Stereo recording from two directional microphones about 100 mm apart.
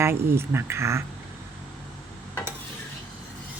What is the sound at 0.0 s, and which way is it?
Speech, 25° right (ahead or behind).